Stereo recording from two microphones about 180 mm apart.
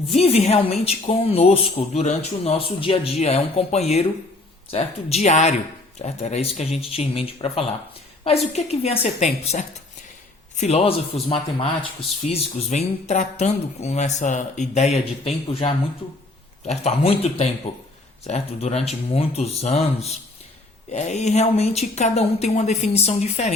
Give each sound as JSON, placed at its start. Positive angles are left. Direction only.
{"t": 0.1, "sound": "speech", "side_deg": 35}